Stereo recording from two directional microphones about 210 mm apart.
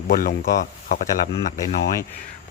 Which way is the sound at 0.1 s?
40° left (ahead or behind).